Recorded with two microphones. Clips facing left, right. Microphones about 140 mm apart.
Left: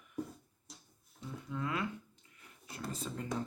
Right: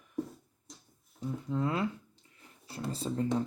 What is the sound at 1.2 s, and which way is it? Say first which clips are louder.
Speech: right 7 dB; 35° right (ahead or behind).